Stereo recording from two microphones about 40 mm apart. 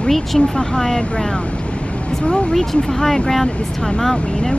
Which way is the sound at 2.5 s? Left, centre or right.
Centre.